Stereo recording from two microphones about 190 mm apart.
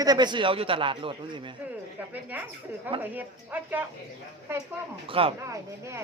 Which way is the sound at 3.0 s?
10° right (ahead or behind).